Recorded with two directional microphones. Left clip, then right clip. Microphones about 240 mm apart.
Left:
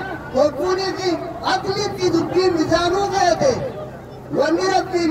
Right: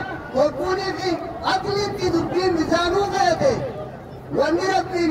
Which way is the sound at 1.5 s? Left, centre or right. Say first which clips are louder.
Left 1 dB; centre.